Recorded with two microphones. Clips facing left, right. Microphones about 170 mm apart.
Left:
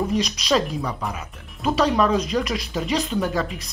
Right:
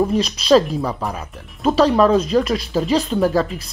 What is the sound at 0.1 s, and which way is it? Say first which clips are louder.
Speech: right 7 dB; 30° right (ahead or behind).